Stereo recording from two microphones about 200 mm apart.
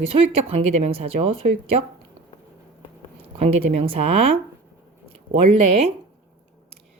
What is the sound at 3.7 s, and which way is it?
A woman's voice, 30° right (ahead or behind).